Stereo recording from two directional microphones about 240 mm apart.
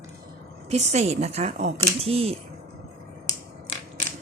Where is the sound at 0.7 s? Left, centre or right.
Right.